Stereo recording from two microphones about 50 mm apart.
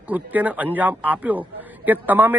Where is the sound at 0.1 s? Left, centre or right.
Right.